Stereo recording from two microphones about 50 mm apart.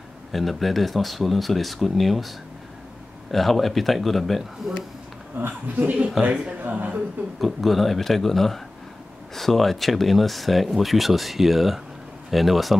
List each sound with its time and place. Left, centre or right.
0.3 s speech: centre
5.4 s a man's voice: right
5.8 s speech: right
6.6 s a man's voice: right
7.3 s speech: centre